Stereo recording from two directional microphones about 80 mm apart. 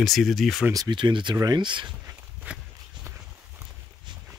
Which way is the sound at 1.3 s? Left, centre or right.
Right.